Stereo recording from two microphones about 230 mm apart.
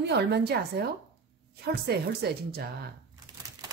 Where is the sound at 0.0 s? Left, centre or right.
Right.